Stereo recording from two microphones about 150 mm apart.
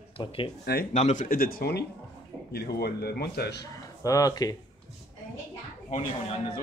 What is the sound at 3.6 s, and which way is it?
Speech, 20° left (ahead or behind).